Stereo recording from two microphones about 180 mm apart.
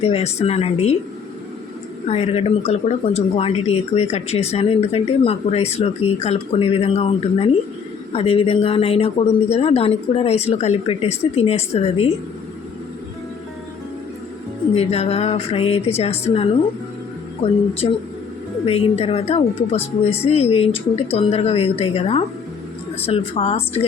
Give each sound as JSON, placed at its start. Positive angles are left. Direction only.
{"t": 0.0, "sound": "a woman's voice", "side_deg": 35}
{"t": 2.0, "sound": "a woman's voice", "side_deg": 35}
{"t": 14.7, "sound": "a woman's voice", "side_deg": 35}
{"t": 17.4, "sound": "a woman's voice", "side_deg": 30}
{"t": 18.6, "sound": "a woman's voice", "side_deg": 35}